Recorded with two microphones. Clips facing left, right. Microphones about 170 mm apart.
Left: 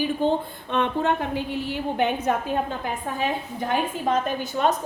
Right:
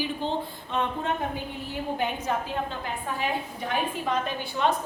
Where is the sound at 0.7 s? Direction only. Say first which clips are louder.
Left 5 dB; 75° left (ahead or behind).